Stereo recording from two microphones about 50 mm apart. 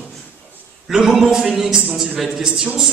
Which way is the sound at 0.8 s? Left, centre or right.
Centre.